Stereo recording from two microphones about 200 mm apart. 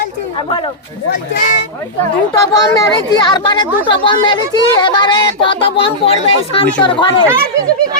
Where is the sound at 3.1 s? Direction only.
20° left (ahead or behind).